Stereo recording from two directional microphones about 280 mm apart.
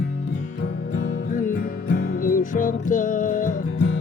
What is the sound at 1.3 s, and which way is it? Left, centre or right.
Music, left.